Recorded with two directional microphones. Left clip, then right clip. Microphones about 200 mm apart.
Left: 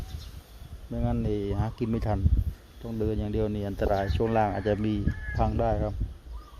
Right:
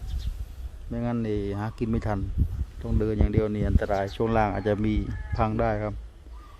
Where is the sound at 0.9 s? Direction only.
15° right (ahead or behind).